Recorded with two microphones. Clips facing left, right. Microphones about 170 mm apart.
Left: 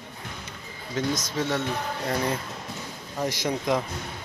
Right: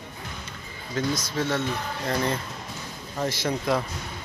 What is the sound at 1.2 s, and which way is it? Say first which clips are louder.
Speech: even; 15° left (ahead or behind).